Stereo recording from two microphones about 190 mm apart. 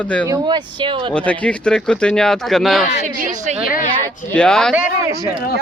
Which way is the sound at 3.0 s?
40° right (ahead or behind).